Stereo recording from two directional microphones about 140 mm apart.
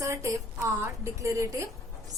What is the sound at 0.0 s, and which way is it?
A woman's voice, 20° right (ahead or behind).